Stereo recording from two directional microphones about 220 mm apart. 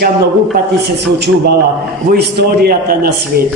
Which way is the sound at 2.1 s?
45° right (ahead or behind).